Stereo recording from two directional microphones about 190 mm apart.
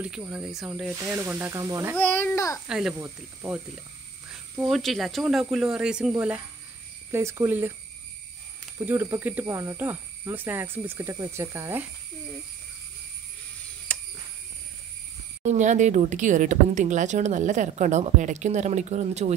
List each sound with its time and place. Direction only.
0.0 s speech: 5° right (ahead or behind)
2.0 s a child's voice: 10° left (ahead or behind)
2.7 s speech: 5° right (ahead or behind)
8.7 s speech: 15° right (ahead or behind)
13.9 s cricket: 5° left (ahead or behind)
15.4 s speech: 40° right (ahead or behind)